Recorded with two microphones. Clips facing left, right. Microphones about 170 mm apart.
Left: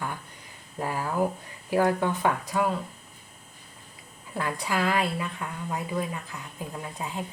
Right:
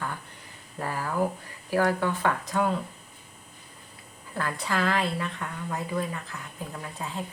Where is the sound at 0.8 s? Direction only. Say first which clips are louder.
Left 1 dB; 15° left (ahead or behind).